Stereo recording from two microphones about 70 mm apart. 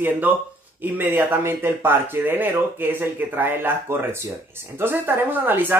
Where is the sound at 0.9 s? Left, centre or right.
Right.